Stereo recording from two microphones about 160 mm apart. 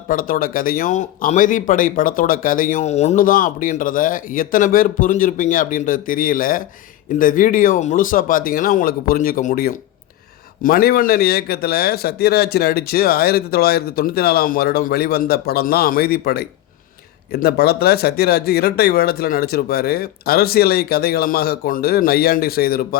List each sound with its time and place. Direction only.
0.1 s a man's voice: 60° left (ahead or behind)